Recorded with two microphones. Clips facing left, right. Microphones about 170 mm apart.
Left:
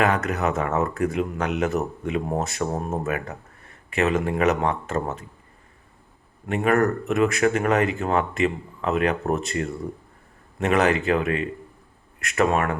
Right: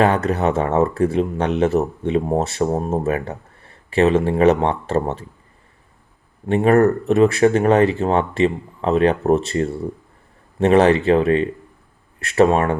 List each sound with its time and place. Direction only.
0.0 s speech: 30° right (ahead or behind)
6.4 s speech: 30° right (ahead or behind)